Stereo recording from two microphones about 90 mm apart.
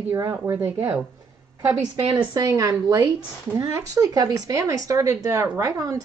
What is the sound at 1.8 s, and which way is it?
A woman's voice, 55° right (ahead or behind).